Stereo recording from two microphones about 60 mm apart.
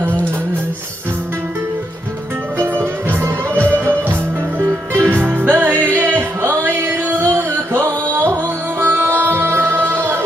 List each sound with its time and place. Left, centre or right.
2.6 s music: right
4.9 s music: right